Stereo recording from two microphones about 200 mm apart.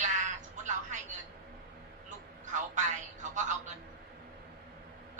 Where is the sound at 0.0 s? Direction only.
35° right (ahead or behind).